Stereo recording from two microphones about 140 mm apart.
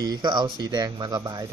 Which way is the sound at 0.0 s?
30° right (ahead or behind).